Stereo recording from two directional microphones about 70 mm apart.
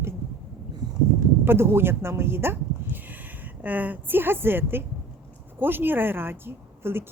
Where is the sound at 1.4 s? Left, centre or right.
Right.